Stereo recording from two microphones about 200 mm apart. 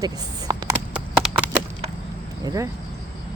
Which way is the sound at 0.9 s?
5° right (ahead or behind).